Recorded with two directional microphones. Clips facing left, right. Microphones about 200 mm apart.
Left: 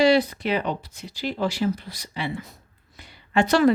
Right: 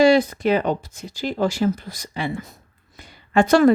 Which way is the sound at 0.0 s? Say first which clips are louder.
Right 4 dB; 45° right (ahead or behind).